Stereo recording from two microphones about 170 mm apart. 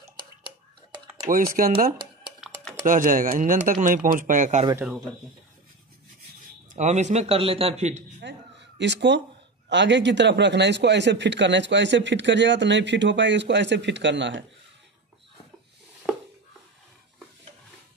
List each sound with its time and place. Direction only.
1.6 s speech: 55° right (ahead or behind)
6.7 s a man's voice: 45° right (ahead or behind)
8.2 s a sound: 90° right
9.7 s a man's voice: 90° right